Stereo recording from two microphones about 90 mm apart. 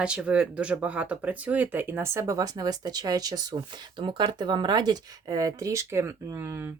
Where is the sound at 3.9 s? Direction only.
65° right (ahead or behind).